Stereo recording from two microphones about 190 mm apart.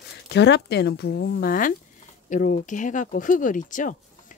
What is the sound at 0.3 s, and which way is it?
Speech, 65° left (ahead or behind).